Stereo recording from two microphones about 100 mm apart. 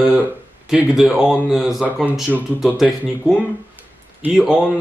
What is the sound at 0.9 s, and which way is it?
A man's voice, 5° right (ahead or behind).